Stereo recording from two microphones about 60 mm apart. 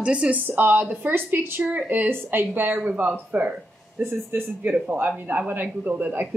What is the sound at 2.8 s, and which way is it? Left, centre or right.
Speech, centre.